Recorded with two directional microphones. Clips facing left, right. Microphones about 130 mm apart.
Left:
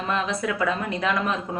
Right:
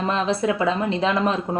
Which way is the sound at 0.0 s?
30° right (ahead or behind).